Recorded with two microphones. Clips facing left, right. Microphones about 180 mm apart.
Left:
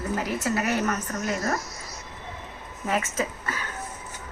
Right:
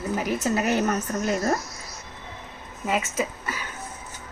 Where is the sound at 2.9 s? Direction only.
10° right (ahead or behind).